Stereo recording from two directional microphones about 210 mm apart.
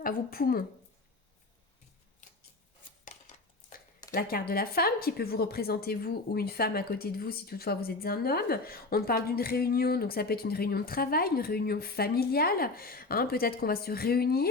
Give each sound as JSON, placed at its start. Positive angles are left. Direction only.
{"t": 0.0, "sound": "speech", "side_deg": 45}
{"t": 3.0, "sound": "a sound", "side_deg": 35}
{"t": 4.1, "sound": "speech", "side_deg": 45}